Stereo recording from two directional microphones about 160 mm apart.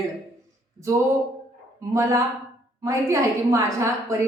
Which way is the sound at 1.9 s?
20° right (ahead or behind).